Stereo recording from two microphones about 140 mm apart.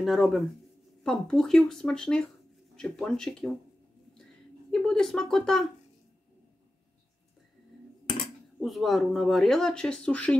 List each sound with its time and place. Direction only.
0.0 s speech: centre (ahead or behind)
4.6 s speech: 5° left (ahead or behind)
8.5 s speech: centre (ahead or behind)